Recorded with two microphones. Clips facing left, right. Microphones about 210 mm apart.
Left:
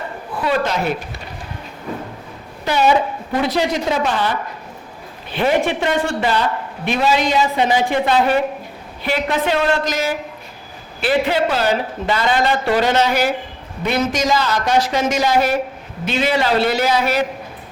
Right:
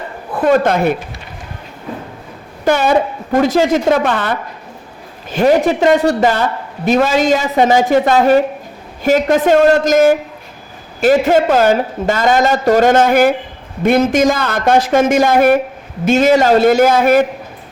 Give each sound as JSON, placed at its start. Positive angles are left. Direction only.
{"t": 0.3, "sound": "speech", "side_deg": -50}
{"t": 2.6, "sound": "a woman's voice", "side_deg": -50}
{"t": 5.3, "sound": "speech", "side_deg": -40}